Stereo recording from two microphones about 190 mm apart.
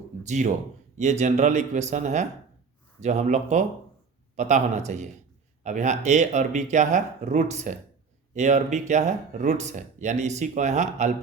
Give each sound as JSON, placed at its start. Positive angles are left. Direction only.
{"t": 0.3, "sound": "speech", "side_deg": -40}